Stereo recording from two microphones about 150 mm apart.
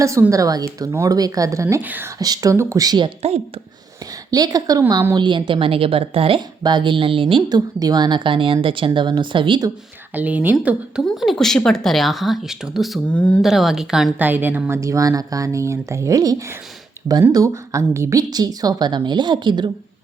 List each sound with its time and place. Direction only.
0.0 s a woman's voice: 20° right (ahead or behind)
2.1 s a woman's voice: 25° right (ahead or behind)
4.3 s a woman's voice: 25° right (ahead or behind)
10.2 s a woman's voice: 10° right (ahead or behind); by 19.7 s 30° right (ahead or behind)